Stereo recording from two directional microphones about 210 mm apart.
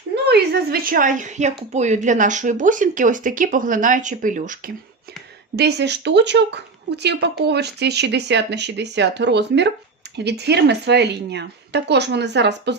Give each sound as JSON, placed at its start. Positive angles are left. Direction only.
{"t": 0.3, "sound": "speech", "side_deg": -50}
{"t": 5.5, "sound": "a woman's voice", "side_deg": -55}